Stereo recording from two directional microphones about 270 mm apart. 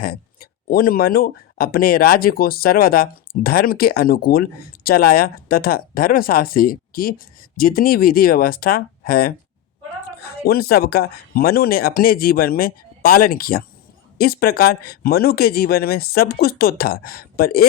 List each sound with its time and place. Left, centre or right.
0.0 s speech: left